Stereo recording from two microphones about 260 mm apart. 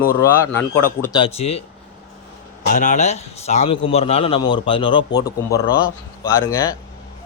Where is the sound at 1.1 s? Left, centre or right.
Centre.